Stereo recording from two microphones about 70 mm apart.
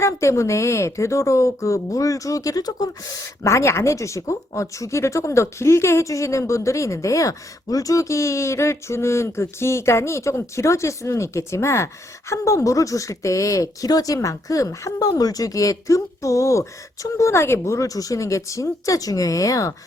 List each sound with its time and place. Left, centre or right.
0.0 s speech: left
17.7 s speech: left